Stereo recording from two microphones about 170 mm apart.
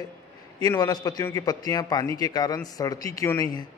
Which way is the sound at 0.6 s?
20° left (ahead or behind).